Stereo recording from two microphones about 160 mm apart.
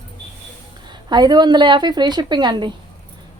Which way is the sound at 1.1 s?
25° right (ahead or behind).